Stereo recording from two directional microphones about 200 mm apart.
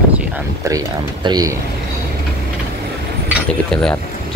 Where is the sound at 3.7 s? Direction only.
5° left (ahead or behind).